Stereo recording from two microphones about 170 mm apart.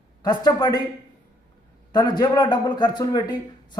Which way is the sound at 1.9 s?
25° left (ahead or behind).